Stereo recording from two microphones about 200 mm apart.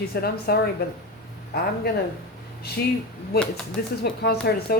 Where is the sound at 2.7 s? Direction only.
50° left (ahead or behind).